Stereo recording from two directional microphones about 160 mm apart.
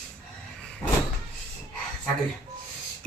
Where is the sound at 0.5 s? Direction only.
5° left (ahead or behind).